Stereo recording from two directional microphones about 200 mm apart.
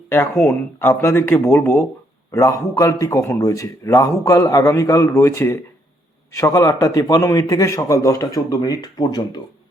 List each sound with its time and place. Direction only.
0.1 s speech: 10° left (ahead or behind)